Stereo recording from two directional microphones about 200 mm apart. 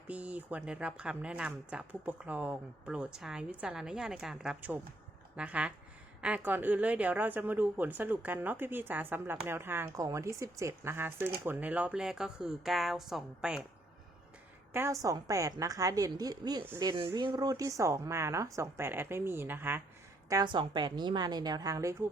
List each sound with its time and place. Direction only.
0.1 s a woman's voice: 5° right (ahead or behind)
14.7 s a woman's voice: 15° right (ahead or behind)
20.3 s a woman's voice: 20° right (ahead or behind)